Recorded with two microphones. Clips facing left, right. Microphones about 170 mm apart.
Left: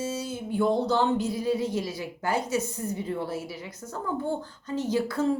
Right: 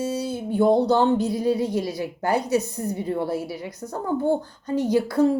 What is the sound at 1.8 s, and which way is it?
A woman's voice, 35° right (ahead or behind).